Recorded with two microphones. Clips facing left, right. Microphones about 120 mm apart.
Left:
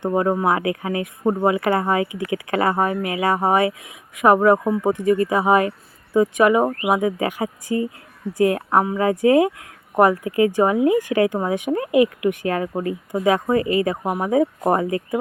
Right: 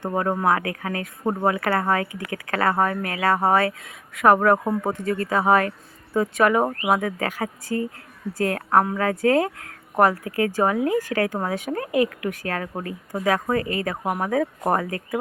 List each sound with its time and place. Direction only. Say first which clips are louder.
0.1 s speech: left 2 dB; 10° left (ahead or behind)
1.2 s speech: left 4 dB; centre (ahead or behind)
1.5 s speech: left 1 dB; 15° left (ahead or behind)
4.5 s speech: left 3 dB; centre (ahead or behind)
4.8 s speech: left 7 dB; 15° left (ahead or behind)